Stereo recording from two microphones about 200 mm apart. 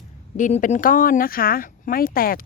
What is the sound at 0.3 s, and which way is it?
Speech, 40° left (ahead or behind).